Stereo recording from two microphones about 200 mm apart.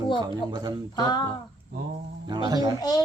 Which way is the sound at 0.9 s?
20° left (ahead or behind).